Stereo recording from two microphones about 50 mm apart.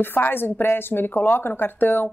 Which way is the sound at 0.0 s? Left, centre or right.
Left.